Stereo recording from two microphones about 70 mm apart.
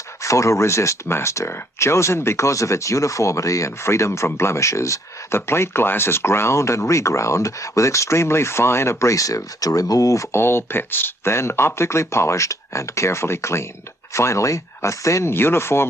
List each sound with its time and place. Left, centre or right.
0.2 s speech: left
10.3 s speech: left
15.3 s speech: left